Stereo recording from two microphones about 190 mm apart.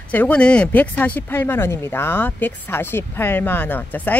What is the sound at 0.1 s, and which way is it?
Speech, 5° left (ahead or behind).